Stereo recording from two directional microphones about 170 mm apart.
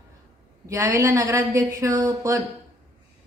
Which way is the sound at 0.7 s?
15° right (ahead or behind).